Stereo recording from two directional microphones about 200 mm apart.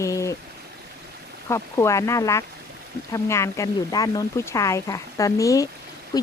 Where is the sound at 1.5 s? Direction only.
15° left (ahead or behind).